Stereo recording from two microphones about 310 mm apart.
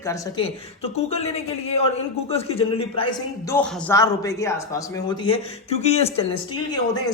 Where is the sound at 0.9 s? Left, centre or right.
Centre.